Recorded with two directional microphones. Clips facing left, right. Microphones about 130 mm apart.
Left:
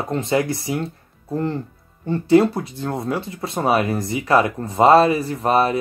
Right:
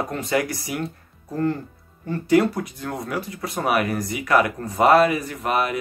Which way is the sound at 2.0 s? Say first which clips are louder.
Left 4 dB; 25° left (ahead or behind).